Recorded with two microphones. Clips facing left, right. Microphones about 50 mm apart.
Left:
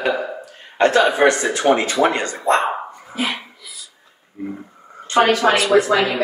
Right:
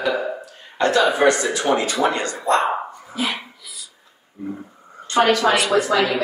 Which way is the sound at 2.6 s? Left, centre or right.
Centre.